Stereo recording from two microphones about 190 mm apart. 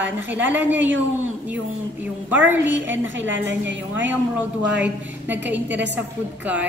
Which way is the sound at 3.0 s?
75° right (ahead or behind).